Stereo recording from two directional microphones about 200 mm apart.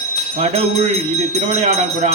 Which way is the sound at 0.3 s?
30° right (ahead or behind).